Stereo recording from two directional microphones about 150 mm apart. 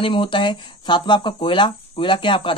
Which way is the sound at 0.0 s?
35° left (ahead or behind).